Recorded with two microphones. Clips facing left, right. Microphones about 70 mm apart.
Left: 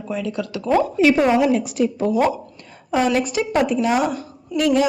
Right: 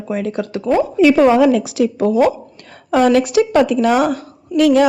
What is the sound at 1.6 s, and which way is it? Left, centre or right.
A woman's voice, right.